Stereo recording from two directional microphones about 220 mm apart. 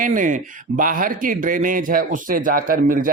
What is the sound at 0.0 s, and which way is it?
Speech, 35° right (ahead or behind).